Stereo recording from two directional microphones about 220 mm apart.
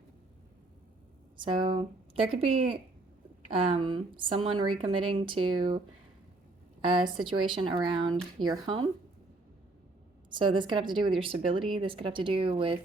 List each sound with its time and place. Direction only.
1.4 s speech: 20° right (ahead or behind)
6.8 s speech: 20° right (ahead or behind)
10.3 s speech: 20° right (ahead or behind)